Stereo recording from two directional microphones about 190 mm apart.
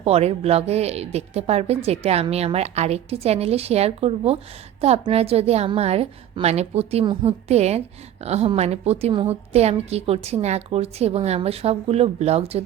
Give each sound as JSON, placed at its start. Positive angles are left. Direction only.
{"t": 0.0, "sound": "a woman's voice", "side_deg": -30}